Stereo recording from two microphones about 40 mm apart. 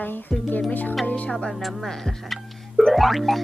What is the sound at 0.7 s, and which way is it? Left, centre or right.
Speech, left.